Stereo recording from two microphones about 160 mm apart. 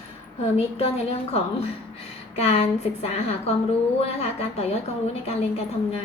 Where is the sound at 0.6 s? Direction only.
40° left (ahead or behind).